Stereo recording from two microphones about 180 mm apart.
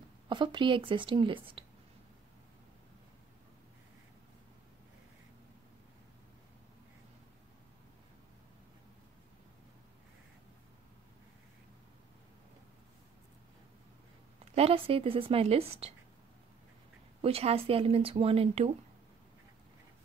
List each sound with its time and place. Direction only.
0.3 s speech: 25° right (ahead or behind)
14.4 s speech: 35° right (ahead or behind)
17.2 s speech: 35° right (ahead or behind)